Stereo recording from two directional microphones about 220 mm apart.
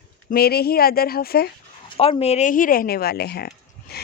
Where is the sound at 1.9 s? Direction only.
25° left (ahead or behind).